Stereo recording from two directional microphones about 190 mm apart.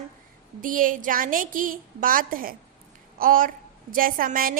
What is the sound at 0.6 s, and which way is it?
A woman's voice, 45° right (ahead or behind).